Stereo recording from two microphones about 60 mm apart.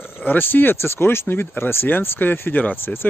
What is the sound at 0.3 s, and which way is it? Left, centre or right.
Speech, left.